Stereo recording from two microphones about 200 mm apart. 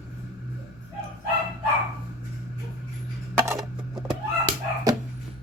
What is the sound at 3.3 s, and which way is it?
Coin, 15° right (ahead or behind).